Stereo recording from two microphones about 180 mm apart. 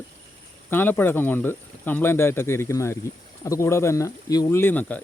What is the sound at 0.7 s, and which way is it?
Speech, 10° left (ahead or behind).